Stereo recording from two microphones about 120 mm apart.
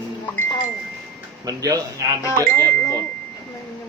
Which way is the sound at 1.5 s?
30° right (ahead or behind).